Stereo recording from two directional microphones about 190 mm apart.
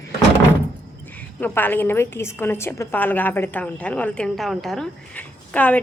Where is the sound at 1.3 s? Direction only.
10° left (ahead or behind).